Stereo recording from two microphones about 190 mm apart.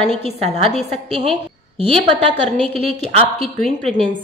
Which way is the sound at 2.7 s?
30° right (ahead or behind).